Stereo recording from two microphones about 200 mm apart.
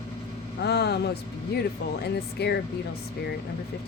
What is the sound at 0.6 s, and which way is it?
Speech, 55° left (ahead or behind).